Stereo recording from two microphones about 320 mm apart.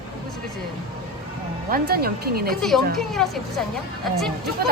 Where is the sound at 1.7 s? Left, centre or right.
Right.